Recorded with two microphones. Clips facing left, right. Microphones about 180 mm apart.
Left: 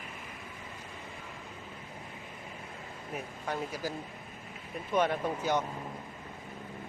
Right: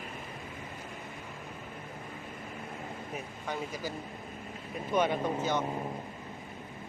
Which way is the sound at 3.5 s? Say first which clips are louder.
Left 1 dB; 5° left (ahead or behind).